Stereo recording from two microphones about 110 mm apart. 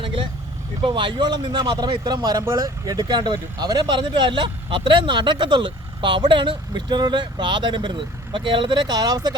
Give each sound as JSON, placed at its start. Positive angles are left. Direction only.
{"t": 0.0, "sound": "vehicle", "side_deg": -55}
{"t": 0.8, "sound": "speech", "side_deg": -50}